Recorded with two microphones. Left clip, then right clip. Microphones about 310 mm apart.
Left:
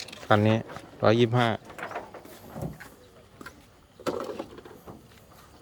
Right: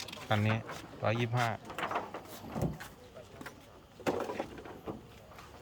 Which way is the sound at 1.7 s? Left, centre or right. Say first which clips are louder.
Right 1 dB; right.